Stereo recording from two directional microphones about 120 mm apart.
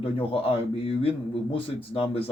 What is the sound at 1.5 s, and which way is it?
Speech, 50° left (ahead or behind).